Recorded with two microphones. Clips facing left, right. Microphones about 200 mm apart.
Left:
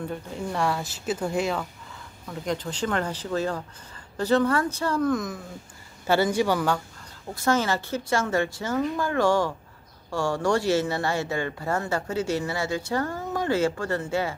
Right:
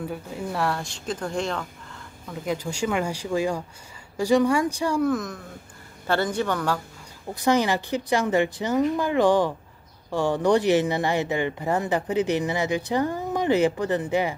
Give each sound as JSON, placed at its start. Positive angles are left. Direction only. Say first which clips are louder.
{"t": 0.0, "sound": "speech", "louder": "even", "side_deg": -5}
{"t": 2.2, "sound": "speech", "louder": "right 1 dB", "side_deg": -5}
{"t": 5.1, "sound": "a man's voice", "louder": "even", "side_deg": 0}
{"t": 7.3, "sound": "speech", "louder": "right 2 dB", "side_deg": -15}